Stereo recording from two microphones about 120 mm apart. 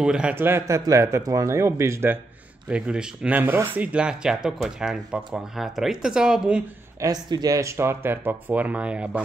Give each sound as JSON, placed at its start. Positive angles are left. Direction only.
{"t": 0.0, "sound": "speech", "side_deg": -5}
{"t": 0.4, "sound": "speech", "side_deg": -20}
{"t": 2.7, "sound": "speech", "side_deg": -10}
{"t": 7.0, "sound": "speech", "side_deg": -35}